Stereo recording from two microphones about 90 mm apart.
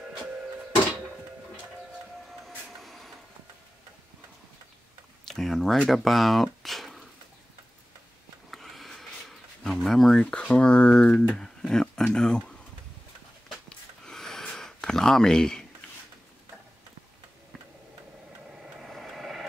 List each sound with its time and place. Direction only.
2.4 s vehicle: centre (ahead or behind)
5.3 s speech: 5° left (ahead or behind)
8.5 s a sound: centre (ahead or behind)
11.2 s speech: 5° left (ahead or behind)
13.7 s a sound: 5° left (ahead or behind)
18.6 s vehicle: 5° right (ahead or behind)